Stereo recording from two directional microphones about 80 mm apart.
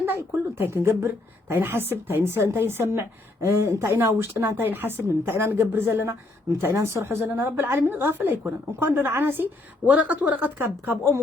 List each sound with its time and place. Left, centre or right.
0.0 s a woman's voice: right